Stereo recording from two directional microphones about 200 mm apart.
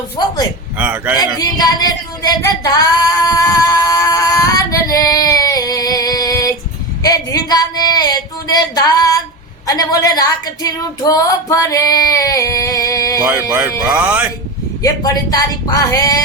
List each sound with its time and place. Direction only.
0.2 s speech: 20° left (ahead or behind)
0.8 s speech: 10° right (ahead or behind)
1.4 s female singing: 20° left (ahead or behind)
7.0 s a sound: 20° left (ahead or behind)
9.6 s speech: 20° left (ahead or behind)
13.5 s speech: 5° right (ahead or behind)
14.8 s speech: 20° left (ahead or behind)